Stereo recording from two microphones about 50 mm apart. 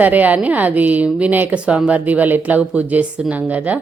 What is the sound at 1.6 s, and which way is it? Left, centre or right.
Speech, right.